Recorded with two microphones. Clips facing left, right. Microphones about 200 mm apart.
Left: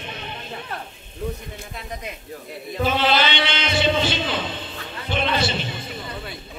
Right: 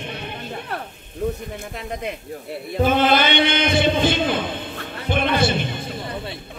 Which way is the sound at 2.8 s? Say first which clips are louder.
Right 3 dB; 50° right (ahead or behind).